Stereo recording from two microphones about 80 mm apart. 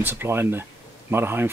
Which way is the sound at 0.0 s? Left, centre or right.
Right.